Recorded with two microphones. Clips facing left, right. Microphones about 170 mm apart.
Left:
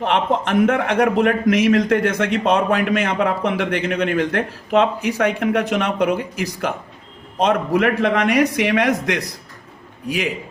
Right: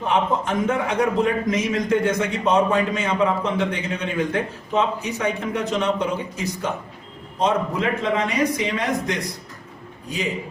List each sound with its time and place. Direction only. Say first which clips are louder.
0.0 s a man's voice: left 2 dB; 75° left (ahead or behind)